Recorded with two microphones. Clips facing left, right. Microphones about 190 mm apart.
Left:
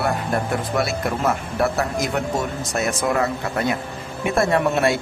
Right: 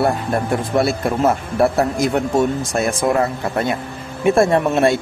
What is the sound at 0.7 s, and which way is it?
Speech, 30° right (ahead or behind).